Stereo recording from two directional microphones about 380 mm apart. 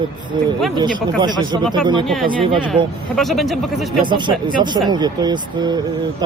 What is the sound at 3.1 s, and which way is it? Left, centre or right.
Speech, centre.